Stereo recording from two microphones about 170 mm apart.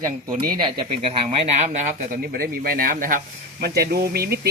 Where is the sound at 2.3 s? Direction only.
60° right (ahead or behind).